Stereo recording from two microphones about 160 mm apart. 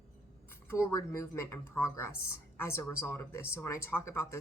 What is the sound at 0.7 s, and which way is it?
A woman's voice, 15° left (ahead or behind).